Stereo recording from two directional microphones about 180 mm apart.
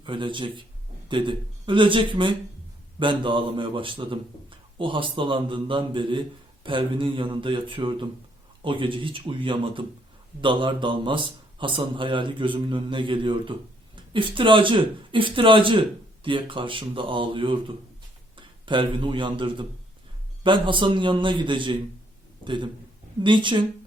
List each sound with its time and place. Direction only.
0.0 s a man's voice: 25° right (ahead or behind)